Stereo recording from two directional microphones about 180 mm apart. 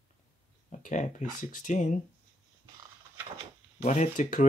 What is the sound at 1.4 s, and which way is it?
Speech, 45° left (ahead or behind).